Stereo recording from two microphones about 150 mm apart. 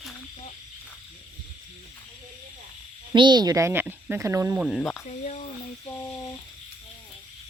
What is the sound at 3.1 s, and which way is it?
Speech, 30° right (ahead or behind).